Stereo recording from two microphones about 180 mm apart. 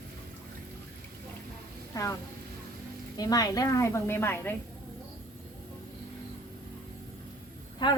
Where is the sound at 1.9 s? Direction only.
15° left (ahead or behind).